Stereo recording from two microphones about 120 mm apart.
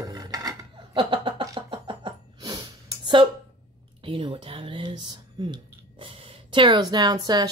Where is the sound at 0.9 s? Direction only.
45° right (ahead or behind).